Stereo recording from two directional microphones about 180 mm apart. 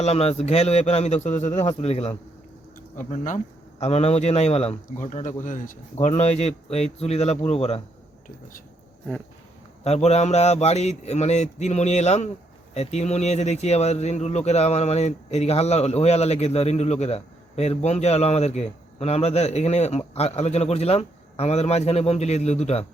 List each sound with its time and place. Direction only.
0.0 s speech: 35° left (ahead or behind)
9.8 s speech: 35° left (ahead or behind)